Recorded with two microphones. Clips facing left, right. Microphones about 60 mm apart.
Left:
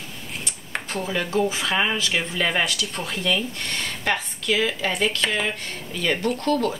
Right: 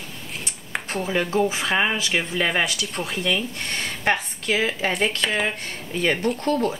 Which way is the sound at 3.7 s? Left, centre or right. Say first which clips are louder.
Right 3 dB; right.